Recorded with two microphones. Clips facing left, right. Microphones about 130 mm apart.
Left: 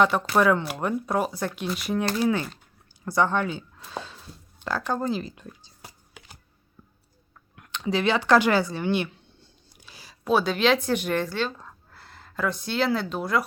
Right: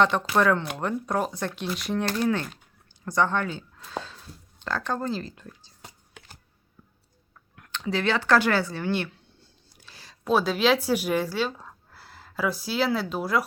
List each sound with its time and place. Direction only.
0.0 s speech: 10° left (ahead or behind)
3.9 s a sound: 15° left (ahead or behind)
4.6 s computer keyboard: 10° left (ahead or behind)
7.5 s speech: 15° left (ahead or behind)
9.6 s a sound: 15° left (ahead or behind)
10.2 s speech: centre (ahead or behind)